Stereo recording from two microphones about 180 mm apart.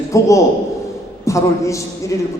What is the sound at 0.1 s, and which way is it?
A man's voice, 15° left (ahead or behind).